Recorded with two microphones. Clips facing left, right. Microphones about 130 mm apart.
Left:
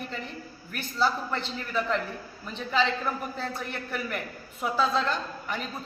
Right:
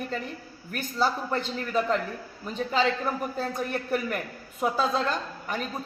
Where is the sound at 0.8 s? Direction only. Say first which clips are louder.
Right 1 dB; 45° right (ahead or behind).